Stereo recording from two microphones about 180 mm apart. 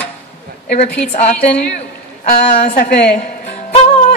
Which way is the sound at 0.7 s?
35° left (ahead or behind).